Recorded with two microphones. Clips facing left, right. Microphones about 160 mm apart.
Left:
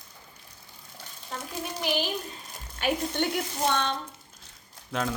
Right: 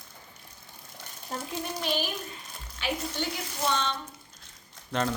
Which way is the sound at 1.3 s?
40° right (ahead or behind).